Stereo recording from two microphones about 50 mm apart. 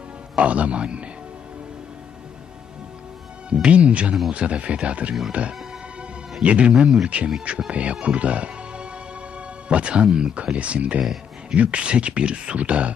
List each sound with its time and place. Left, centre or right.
0.4 s speech: right
3.5 s speech: right